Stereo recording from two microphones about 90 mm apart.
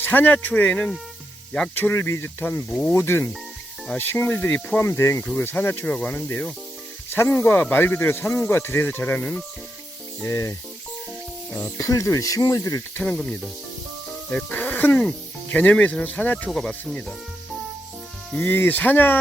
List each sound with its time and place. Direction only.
0.0 s speech: 20° left (ahead or behind)
1.7 s speech: 25° left (ahead or behind)
5.8 s speech: 15° left (ahead or behind); by 10.5 s 30° left (ahead or behind)
11.8 s speech: 35° left (ahead or behind)
13.0 s speech: 15° left (ahead or behind)
18.3 s speech: 20° left (ahead or behind)